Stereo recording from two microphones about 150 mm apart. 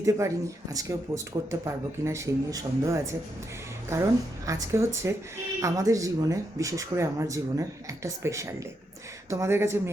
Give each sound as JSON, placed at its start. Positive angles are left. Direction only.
{"t": 0.0, "sound": "speech", "side_deg": -20}